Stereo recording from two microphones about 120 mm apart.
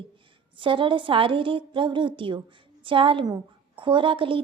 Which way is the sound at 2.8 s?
45° right (ahead or behind).